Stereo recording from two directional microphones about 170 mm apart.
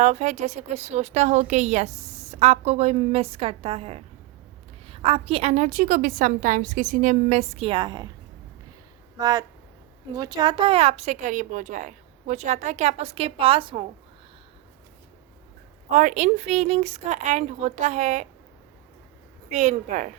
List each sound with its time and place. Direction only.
0.0 s a woman's voice: 45° right (ahead or behind); by 8.1 s 25° right (ahead or behind)
9.1 s speech: 20° right (ahead or behind)
15.9 s a woman's voice: 50° right (ahead or behind)
19.5 s a woman's voice: 45° right (ahead or behind)